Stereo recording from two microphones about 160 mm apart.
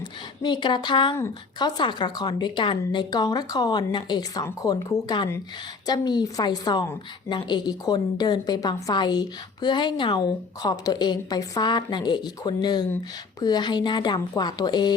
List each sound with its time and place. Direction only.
0.4 s a woman's voice: 30° left (ahead or behind)